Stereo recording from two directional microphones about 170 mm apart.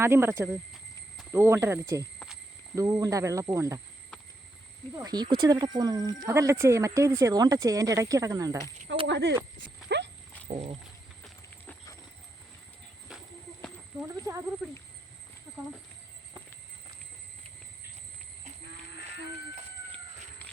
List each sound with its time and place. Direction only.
0.0 s speech: 15° right (ahead or behind)
4.9 s speech: 25° right (ahead or behind)
9.0 s speech: 90° right
9.6 s clip-clop: 90° right
10.5 s speech: 40° right (ahead or behind)
11.6 s horse: 10° left (ahead or behind)
14.0 s speech: 15° right (ahead or behind)